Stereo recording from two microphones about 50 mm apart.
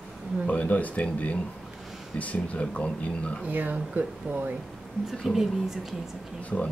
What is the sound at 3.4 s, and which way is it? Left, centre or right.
Speech, right.